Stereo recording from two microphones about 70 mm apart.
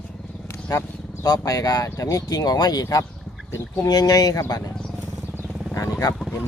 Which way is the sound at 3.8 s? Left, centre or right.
Left.